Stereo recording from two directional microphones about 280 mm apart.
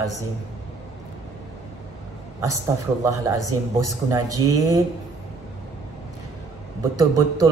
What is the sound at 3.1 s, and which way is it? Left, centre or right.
A man's voice, centre.